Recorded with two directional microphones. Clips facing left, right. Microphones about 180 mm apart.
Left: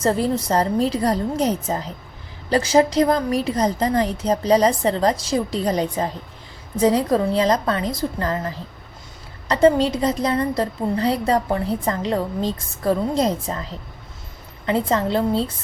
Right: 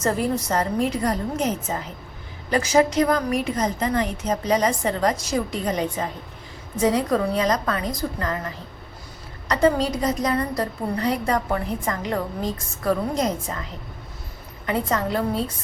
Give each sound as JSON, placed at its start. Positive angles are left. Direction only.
{"t": 0.0, "sound": "a woman's voice", "side_deg": 30}
{"t": 14.7, "sound": "a woman's voice", "side_deg": 25}